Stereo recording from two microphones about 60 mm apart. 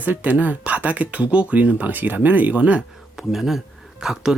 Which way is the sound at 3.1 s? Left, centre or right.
Centre.